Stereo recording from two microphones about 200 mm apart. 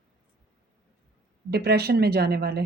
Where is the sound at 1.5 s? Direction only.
55° right (ahead or behind).